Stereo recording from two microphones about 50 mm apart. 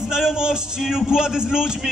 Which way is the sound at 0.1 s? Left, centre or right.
Centre.